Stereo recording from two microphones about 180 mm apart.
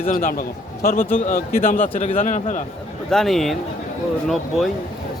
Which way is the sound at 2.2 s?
40° left (ahead or behind).